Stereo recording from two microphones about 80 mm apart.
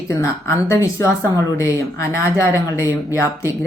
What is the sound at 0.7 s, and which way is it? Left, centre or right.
Speech, left.